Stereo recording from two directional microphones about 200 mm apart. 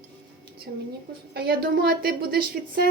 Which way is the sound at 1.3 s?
50° right (ahead or behind).